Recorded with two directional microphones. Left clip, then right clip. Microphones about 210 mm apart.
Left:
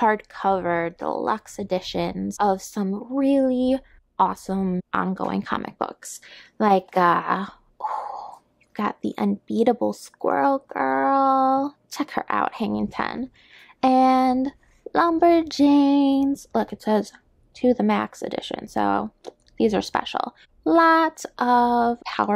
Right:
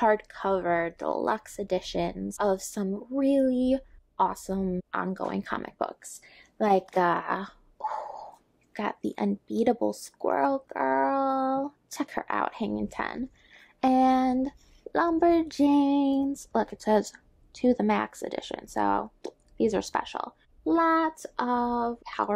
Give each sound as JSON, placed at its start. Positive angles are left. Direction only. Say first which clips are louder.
{"t": 0.0, "sound": "speech", "louder": "left 4 dB", "side_deg": 25}